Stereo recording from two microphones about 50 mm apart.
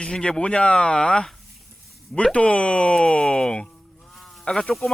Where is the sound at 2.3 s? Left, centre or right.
Left.